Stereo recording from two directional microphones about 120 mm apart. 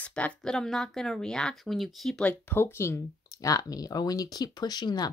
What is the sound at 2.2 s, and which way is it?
Speech, 15° left (ahead or behind).